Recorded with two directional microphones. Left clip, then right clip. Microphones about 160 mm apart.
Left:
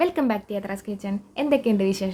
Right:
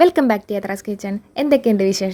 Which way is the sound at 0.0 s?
55° right (ahead or behind).